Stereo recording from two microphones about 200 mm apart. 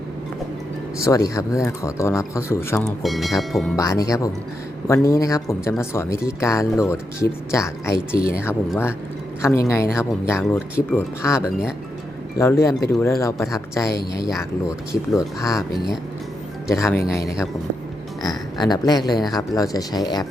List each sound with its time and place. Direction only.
1.0 s speech: 15° left (ahead or behind)
3.0 s speech: centre (ahead or behind)
3.8 s speech: 15° left (ahead or behind)
9.4 s speech: 15° left (ahead or behind)
16.6 s speech: 15° left (ahead or behind)